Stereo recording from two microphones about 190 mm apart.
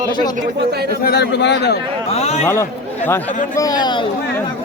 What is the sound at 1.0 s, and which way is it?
Speech, 60° left (ahead or behind).